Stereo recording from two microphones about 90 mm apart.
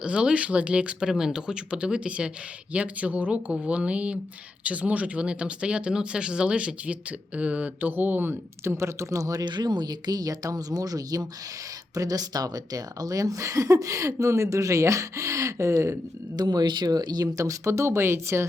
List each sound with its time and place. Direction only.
0.0 s speech: 10° right (ahead or behind); by 9.4 s 40° right (ahead or behind)
9.4 s speech: 55° right (ahead or behind); by 15.7 s 35° right (ahead or behind)
16.3 s speech: 50° right (ahead or behind); by 18.4 s 30° right (ahead or behind)